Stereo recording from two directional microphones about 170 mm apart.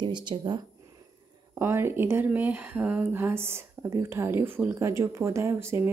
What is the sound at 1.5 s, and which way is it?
Speech, 15° right (ahead or behind).